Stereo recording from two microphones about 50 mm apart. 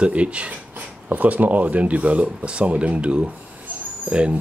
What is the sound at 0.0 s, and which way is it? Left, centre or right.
Speech, right.